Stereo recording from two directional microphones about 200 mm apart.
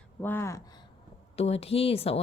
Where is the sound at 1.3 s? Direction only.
30° left (ahead or behind).